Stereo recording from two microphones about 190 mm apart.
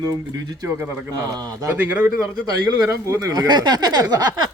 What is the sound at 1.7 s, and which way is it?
A man's voice, 10° right (ahead or behind).